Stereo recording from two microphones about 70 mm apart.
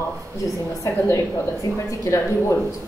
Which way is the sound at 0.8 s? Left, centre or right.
Left.